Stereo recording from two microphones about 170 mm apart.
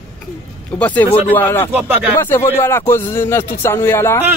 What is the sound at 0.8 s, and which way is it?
Speech, 10° left (ahead or behind).